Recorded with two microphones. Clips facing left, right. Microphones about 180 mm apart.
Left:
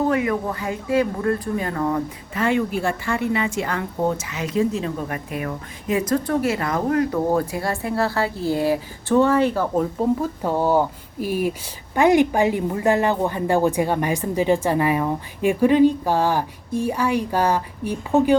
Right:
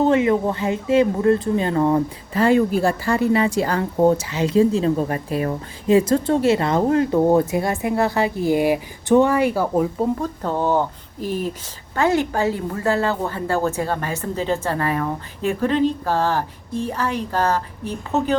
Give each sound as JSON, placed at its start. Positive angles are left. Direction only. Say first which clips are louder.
{"t": 0.0, "sound": "speech", "louder": "right 4 dB", "side_deg": -25}
{"t": 10.2, "sound": "a woman's voice", "louder": "left 1 dB", "side_deg": 10}